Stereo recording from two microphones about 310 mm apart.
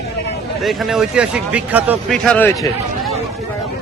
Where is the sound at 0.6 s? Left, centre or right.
Centre.